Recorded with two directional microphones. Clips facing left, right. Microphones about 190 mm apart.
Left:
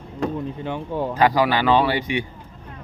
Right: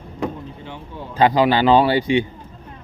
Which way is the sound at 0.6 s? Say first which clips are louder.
Left 9 dB; 55° left (ahead or behind).